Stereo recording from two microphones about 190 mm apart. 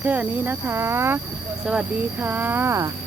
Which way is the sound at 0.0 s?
10° right (ahead or behind).